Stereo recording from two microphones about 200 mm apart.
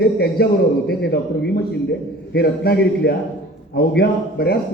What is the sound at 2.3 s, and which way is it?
A man's voice, 50° left (ahead or behind).